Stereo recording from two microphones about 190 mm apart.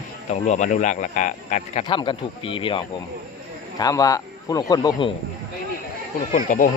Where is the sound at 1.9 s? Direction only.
25° left (ahead or behind).